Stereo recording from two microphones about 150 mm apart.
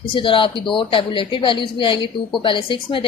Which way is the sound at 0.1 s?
35° left (ahead or behind).